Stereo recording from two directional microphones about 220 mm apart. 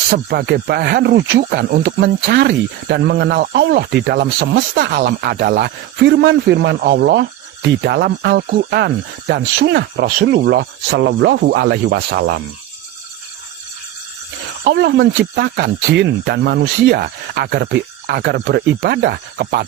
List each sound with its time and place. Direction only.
0.1 s speech: 45° right (ahead or behind)
14.6 s speech: 50° right (ahead or behind)